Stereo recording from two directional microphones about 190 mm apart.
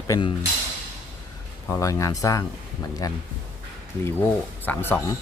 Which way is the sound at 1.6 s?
15° left (ahead or behind).